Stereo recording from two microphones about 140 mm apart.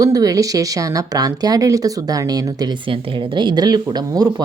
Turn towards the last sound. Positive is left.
turn(degrees=-30)  # may be behind; listen again after turning